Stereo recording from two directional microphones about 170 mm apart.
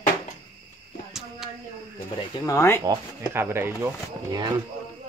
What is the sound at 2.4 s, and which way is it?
Speech, 15° left (ahead or behind).